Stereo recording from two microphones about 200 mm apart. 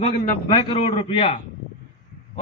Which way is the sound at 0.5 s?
25° left (ahead or behind).